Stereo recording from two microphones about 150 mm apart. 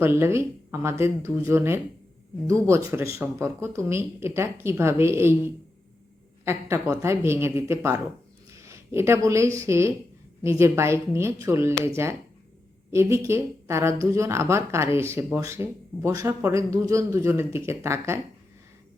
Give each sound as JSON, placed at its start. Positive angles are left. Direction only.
{"t": 0.0, "sound": "speech", "side_deg": -15}
{"t": 6.4, "sound": "speech", "side_deg": -15}
{"t": 12.9, "sound": "speech", "side_deg": -20}